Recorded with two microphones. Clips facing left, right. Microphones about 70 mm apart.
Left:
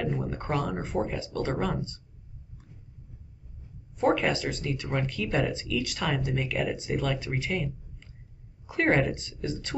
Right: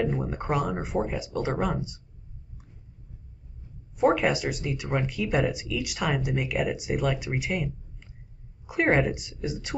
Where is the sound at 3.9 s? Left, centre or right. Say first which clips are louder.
Right 2 dB; centre.